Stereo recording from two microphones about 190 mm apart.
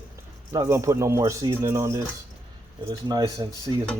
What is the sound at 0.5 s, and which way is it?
Speech, 15° right (ahead or behind).